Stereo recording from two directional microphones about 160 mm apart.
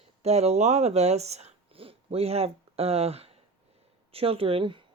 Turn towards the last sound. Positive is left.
turn(degrees=-35)  # may be behind; listen again after turning